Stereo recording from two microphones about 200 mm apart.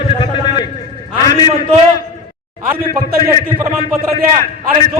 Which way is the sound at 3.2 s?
20° left (ahead or behind).